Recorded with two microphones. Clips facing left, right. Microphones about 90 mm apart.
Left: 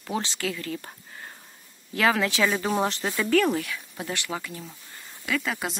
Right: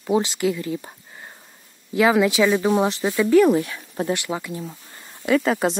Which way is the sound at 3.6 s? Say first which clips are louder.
Right 8 dB; 35° right (ahead or behind).